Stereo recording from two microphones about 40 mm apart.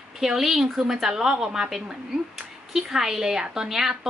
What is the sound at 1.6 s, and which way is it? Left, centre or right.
A woman's voice, centre.